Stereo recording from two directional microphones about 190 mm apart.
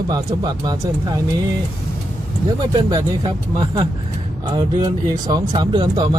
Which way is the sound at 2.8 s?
25° right (ahead or behind).